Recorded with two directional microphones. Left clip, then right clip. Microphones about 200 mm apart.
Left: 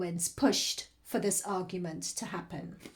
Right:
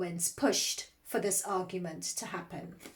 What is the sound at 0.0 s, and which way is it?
Speech, 35° left (ahead or behind).